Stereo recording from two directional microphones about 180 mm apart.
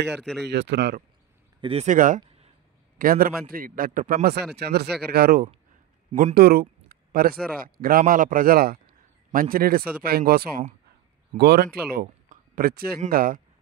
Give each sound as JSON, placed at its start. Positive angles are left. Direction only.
{"t": 0.2, "sound": "speech", "side_deg": 0}
{"t": 0.5, "sound": "speech", "side_deg": -70}
{"t": 1.6, "sound": "speech", "side_deg": -30}
{"t": 1.9, "sound": "a man's voice", "side_deg": -45}